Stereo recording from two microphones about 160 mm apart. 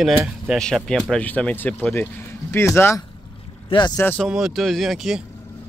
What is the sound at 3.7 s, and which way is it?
Speech, 30° left (ahead or behind).